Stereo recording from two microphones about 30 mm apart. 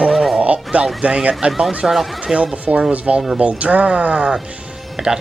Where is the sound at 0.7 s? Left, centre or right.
Right.